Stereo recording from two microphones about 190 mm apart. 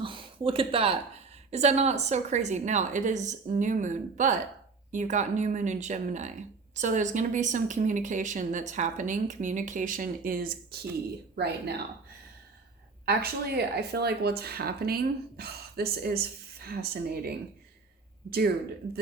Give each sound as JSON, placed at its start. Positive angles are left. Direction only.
{"t": 0.0, "sound": "a sound", "side_deg": -25}
{"t": 1.5, "sound": "speech", "side_deg": -35}
{"t": 13.1, "sound": "speech", "side_deg": -55}